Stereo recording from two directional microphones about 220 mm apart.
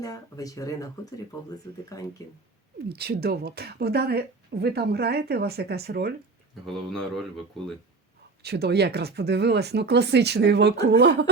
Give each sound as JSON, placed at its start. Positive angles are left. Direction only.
{"t": 0.0, "sound": "speech", "side_deg": 15}
{"t": 1.9, "sound": "speech", "side_deg": 15}
{"t": 2.9, "sound": "speech", "side_deg": -45}
{"t": 6.7, "sound": "speech", "side_deg": 0}
{"t": 8.4, "sound": "speech", "side_deg": -45}